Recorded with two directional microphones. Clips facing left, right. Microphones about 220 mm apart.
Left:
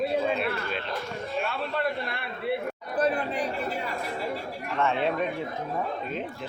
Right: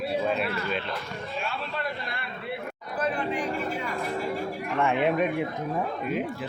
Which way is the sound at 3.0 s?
35° left (ahead or behind).